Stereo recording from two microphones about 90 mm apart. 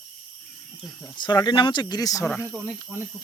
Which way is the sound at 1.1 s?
60° left (ahead or behind).